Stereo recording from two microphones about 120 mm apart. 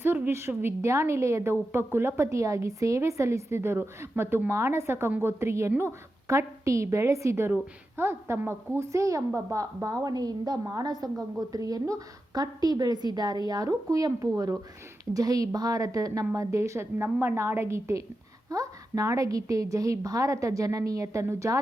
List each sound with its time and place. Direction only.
0.0 s a woman's voice: 15° right (ahead or behind)